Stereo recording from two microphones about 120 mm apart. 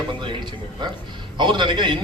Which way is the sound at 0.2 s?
40° right (ahead or behind).